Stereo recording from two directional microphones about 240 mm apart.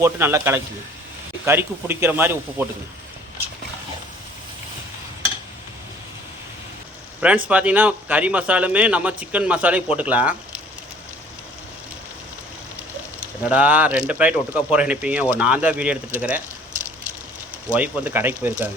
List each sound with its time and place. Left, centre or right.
0.0 s a man's voice: centre
7.2 s speech: centre
13.4 s speech: centre
17.7 s a man's voice: centre